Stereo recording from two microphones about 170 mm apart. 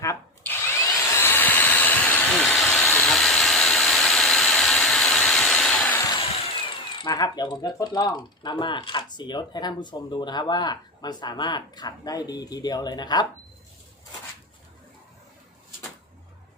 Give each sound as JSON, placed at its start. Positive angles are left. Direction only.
{"t": 0.0, "sound": "drill", "side_deg": 15}
{"t": 2.8, "sound": "steam", "side_deg": 10}
{"t": 6.1, "sound": "chainsaw", "side_deg": 30}
{"t": 7.0, "sound": "speech", "side_deg": 25}